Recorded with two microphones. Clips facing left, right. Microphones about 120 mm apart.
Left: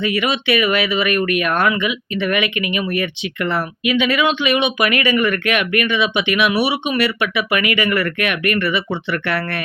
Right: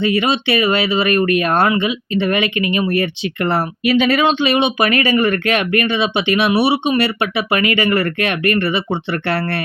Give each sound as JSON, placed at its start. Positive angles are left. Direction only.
{"t": 0.0, "sound": "speech", "side_deg": -30}